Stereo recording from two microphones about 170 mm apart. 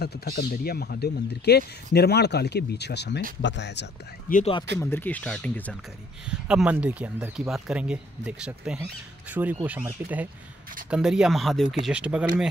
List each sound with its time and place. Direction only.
0.0 s speech: 70° left (ahead or behind); by 3.8 s 90° left
4.3 s speech: 55° left (ahead or behind)
4.8 s speech: 10° left (ahead or behind)
6.2 s speech: 5° right (ahead or behind)